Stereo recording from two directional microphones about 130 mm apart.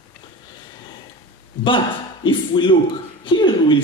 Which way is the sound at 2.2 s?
40° left (ahead or behind).